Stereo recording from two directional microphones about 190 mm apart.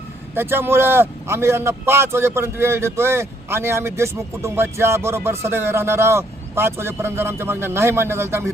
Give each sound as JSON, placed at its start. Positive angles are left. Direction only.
{"t": 0.3, "sound": "a man's voice", "side_deg": -10}